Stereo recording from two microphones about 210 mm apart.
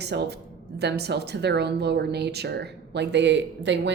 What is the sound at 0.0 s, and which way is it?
A woman's voice, 50° right (ahead or behind).